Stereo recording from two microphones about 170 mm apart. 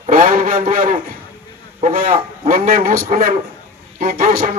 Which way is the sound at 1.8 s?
50° right (ahead or behind).